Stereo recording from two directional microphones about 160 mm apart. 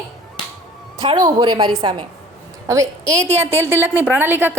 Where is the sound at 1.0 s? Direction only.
25° right (ahead or behind).